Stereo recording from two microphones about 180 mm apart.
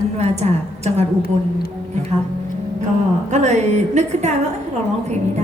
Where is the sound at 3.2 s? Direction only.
40° right (ahead or behind).